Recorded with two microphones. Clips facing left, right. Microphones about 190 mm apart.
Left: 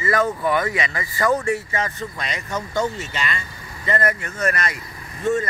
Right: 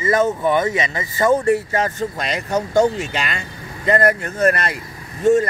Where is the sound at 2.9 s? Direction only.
65° right (ahead or behind).